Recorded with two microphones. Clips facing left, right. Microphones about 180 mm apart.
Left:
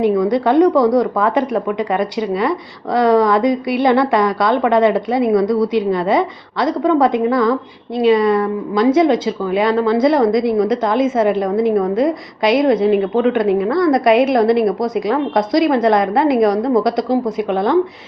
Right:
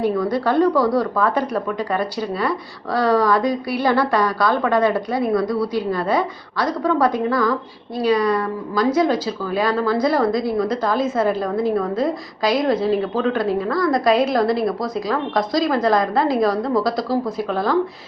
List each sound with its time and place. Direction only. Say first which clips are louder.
0.0 s a woman's voice: left 5 dB; 20° left (ahead or behind)